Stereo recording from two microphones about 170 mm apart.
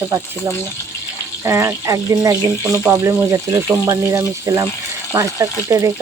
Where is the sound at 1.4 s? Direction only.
15° right (ahead or behind).